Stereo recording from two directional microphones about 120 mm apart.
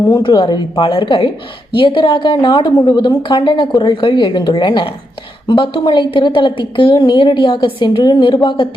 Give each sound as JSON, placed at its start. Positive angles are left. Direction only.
{"t": 0.1, "sound": "a woman's voice", "side_deg": 45}